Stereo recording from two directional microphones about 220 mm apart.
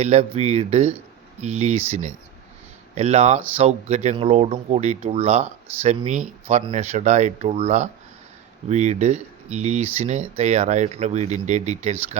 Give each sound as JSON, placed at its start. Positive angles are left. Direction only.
{"t": 0.0, "sound": "speech", "side_deg": -30}